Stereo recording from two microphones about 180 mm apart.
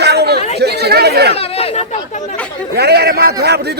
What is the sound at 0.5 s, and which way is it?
Chatter, 65° right (ahead or behind).